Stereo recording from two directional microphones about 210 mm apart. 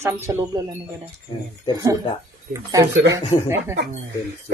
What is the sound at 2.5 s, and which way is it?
Speech, 15° right (ahead or behind).